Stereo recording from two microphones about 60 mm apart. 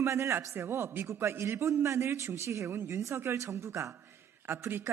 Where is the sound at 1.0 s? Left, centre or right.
Right.